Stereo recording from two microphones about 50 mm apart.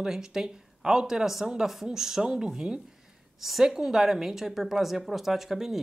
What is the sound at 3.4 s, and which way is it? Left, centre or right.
Speech, centre.